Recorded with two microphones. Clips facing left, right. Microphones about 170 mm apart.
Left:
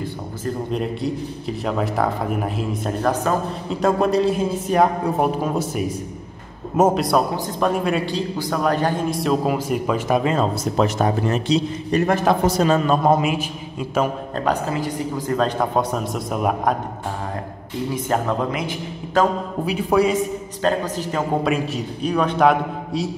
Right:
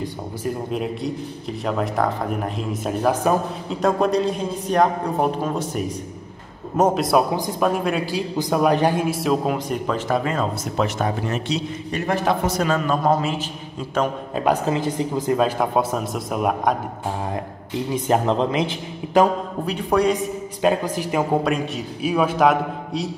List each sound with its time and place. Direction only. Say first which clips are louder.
0.7 s a man's voice: left 1 dB; 5° right (ahead or behind)
3.8 s a man's voice: left 1 dB; centre (ahead or behind)
8.4 s a man's voice: right 4 dB; 15° right (ahead or behind); by 10.4 s 20° left (ahead or behind)
10.6 s a man's voice: left 3 dB; 35° left (ahead or behind); by 13.5 s 15° left (ahead or behind)
14.7 s speech: right 2 dB; 20° right (ahead or behind)
15.4 s a man's voice: even; 5° right (ahead or behind)
17.9 s speech: right 3 dB; 20° right (ahead or behind)
19.6 s a man's voice: left 2 dB; 5° left (ahead or behind)
20.6 s a man's voice: right 1 dB; 10° right (ahead or behind)